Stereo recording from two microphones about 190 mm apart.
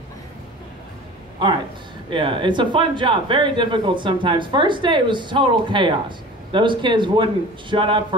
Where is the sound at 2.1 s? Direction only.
25° right (ahead or behind).